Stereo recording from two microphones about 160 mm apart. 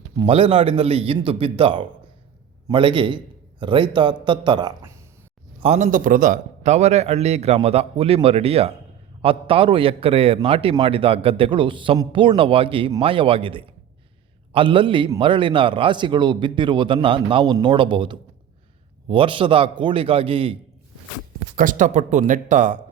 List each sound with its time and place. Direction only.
0.3 s a man's voice: 35° right (ahead or behind)
5.5 s a man's voice: 40° right (ahead or behind)
21.5 s speech: 55° right (ahead or behind)